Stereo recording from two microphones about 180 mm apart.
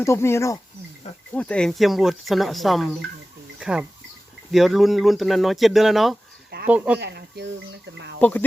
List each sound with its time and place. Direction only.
0.0 s speech: 15° left (ahead or behind); by 7.0 s 10° right (ahead or behind)
7.0 s speech: 65° right (ahead or behind)
8.2 s speech: 10° left (ahead or behind)